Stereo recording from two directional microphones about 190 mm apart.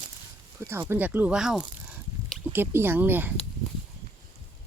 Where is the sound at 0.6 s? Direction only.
15° right (ahead or behind).